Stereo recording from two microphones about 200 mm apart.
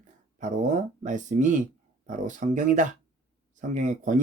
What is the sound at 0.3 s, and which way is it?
Speech, 35° right (ahead or behind).